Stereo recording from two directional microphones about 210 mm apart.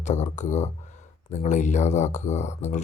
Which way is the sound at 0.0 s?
35° left (ahead or behind).